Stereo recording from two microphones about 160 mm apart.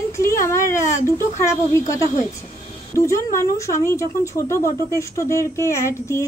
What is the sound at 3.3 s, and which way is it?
Speech, 20° left (ahead or behind).